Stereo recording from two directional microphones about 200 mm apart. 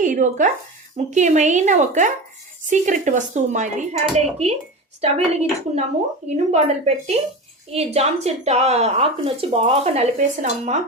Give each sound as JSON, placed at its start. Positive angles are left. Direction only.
{"t": 0.0, "sound": "a woman's voice", "side_deg": -40}